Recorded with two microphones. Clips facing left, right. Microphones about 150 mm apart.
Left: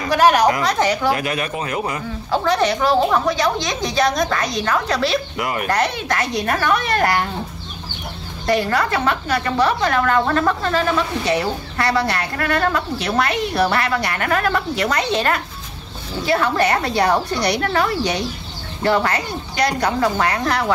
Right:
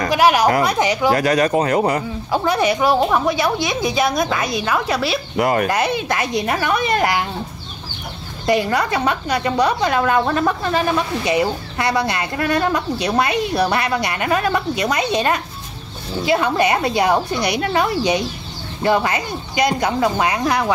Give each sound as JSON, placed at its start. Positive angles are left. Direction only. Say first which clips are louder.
{"t": 0.1, "sound": "a woman's voice", "louder": "left 1 dB", "side_deg": -10}
{"t": 1.1, "sound": "speech", "louder": "right 7 dB", "side_deg": -40}
{"t": 2.3, "sound": "a woman's voice", "louder": "even", "side_deg": -10}
{"t": 5.4, "sound": "speech", "louder": "right 6 dB", "side_deg": -35}
{"t": 5.7, "sound": "a woman's voice", "louder": "right 1 dB", "side_deg": -10}
{"t": 8.5, "sound": "a woman's voice", "louder": "right 1 dB", "side_deg": -15}